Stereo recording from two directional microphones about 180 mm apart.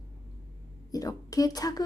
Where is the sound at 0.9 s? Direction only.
20° left (ahead or behind).